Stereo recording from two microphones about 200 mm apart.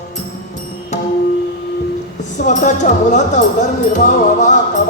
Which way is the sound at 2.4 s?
35° left (ahead or behind).